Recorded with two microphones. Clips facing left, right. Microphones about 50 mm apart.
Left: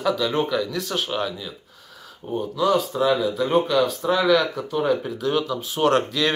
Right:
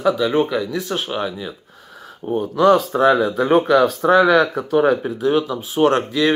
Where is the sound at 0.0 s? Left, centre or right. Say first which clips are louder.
Right 5 dB; centre.